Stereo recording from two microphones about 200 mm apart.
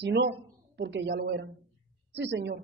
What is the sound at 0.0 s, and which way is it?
A woman's voice, 60° right (ahead or behind).